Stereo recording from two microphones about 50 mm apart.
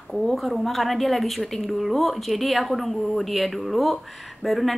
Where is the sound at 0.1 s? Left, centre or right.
Centre.